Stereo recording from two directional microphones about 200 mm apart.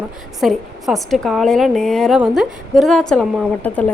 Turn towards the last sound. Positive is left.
turn(degrees=5)  # may be behind; listen again after turning